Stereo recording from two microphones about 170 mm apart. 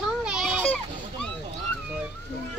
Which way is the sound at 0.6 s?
10° left (ahead or behind).